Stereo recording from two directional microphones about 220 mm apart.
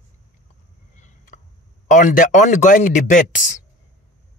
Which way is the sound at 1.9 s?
35° left (ahead or behind).